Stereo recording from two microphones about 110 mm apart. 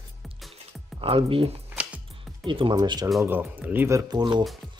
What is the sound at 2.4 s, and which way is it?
Speech, 45° right (ahead or behind).